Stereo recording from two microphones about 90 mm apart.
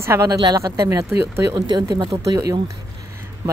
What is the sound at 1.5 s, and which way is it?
Speech, 50° right (ahead or behind).